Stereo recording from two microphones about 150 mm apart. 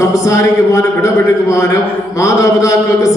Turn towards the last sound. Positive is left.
turn(degrees=20)  # may be behind; listen again after turning